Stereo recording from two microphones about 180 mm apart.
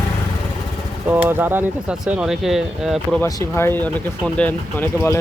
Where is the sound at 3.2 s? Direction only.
15° left (ahead or behind).